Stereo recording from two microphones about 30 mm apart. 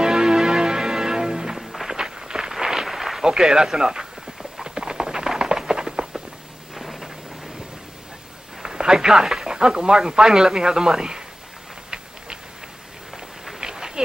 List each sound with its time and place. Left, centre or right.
0.0 s music: right
1.6 s music: centre
2.0 s a sound: right
3.3 s speech: right
4.6 s clip-clop: right
5.0 s a sound: centre
6.7 s thunder: centre
8.6 s speech: right
13.6 s a sound: right